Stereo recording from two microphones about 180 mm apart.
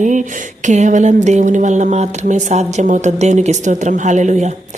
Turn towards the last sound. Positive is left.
turn(degrees=-40)  # may be behind; listen again after turning